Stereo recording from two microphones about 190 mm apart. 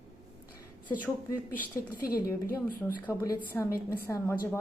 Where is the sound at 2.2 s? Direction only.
15° left (ahead or behind).